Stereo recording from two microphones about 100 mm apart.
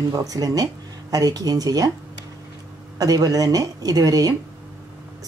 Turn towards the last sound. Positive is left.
turn(degrees=-40)  # may be behind; listen again after turning